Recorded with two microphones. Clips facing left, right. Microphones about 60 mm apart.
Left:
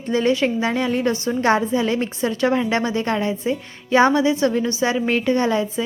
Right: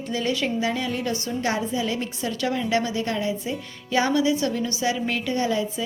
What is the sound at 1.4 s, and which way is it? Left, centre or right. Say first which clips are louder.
A woman's voice: left 8 dB; left.